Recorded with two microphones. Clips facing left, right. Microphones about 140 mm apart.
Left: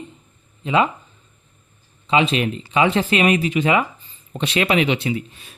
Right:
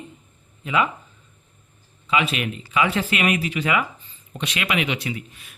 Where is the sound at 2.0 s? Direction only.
30° left (ahead or behind).